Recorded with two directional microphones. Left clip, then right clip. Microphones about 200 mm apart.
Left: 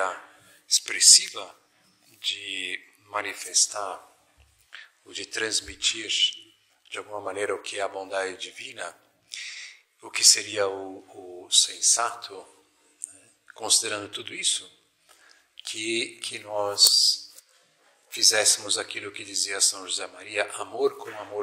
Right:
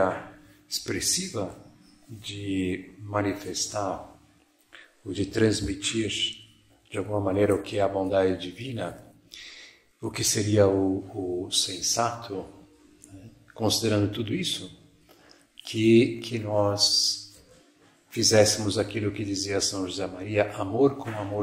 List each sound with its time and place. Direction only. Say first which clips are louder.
0.7 s a man's voice: left 10 dB; 35° left (ahead or behind)